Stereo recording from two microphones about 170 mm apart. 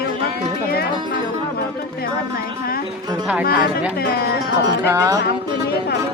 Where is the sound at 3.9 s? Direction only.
65° left (ahead or behind).